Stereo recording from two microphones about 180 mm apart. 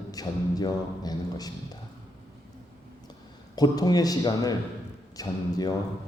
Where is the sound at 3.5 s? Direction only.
20° left (ahead or behind).